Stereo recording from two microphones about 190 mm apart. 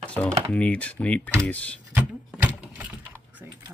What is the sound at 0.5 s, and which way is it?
Speech, 10° left (ahead or behind).